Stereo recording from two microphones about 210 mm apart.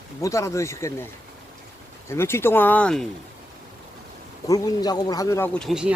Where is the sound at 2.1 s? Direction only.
10° left (ahead or behind).